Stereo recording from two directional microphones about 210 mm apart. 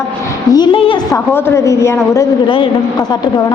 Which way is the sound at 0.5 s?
20° left (ahead or behind).